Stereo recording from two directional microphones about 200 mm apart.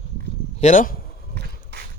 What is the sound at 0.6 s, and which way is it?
Speech, 40° left (ahead or behind).